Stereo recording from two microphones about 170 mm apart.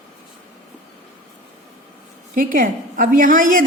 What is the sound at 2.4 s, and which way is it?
A woman's voice, 55° right (ahead or behind).